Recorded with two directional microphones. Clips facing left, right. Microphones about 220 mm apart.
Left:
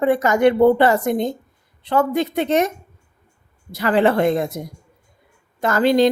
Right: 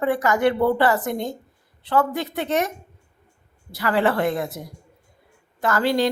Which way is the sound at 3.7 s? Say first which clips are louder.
Left 4 dB; 20° left (ahead or behind).